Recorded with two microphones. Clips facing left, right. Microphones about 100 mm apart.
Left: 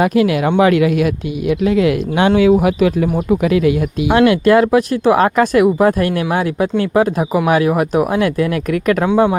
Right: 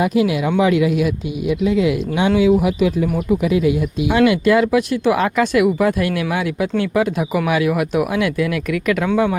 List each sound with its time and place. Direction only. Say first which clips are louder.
0.0 s speech: left 3 dB; 60° left (ahead or behind)
2.6 s speech: left 3 dB; 55° left (ahead or behind)
3.4 s speech: left 3 dB; 70° left (ahead or behind); by 9.0 s 45° left (ahead or behind)